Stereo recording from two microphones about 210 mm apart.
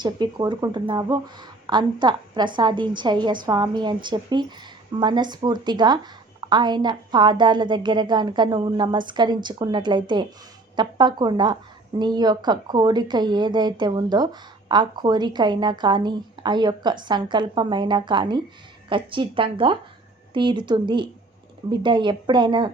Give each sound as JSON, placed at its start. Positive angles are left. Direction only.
{"t": 0.0, "sound": "a woman's voice", "side_deg": -20}